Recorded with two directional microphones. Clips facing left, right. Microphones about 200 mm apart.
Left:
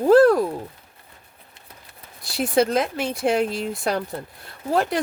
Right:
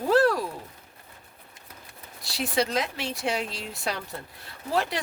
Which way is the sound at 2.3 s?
50° left (ahead or behind).